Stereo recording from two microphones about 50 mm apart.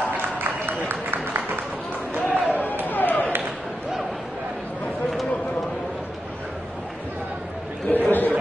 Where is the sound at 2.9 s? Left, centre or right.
Left.